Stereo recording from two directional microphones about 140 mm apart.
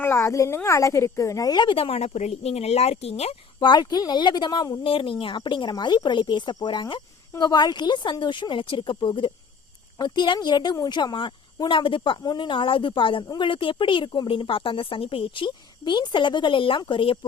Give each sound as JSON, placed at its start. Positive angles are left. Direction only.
{"t": 0.0, "sound": "speech", "side_deg": 20}
{"t": 3.6, "sound": "speech", "side_deg": 30}